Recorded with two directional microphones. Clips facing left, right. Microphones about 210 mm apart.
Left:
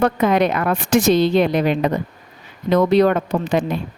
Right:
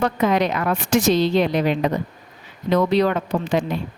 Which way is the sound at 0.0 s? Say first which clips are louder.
Left 3 dB; 55° left (ahead or behind).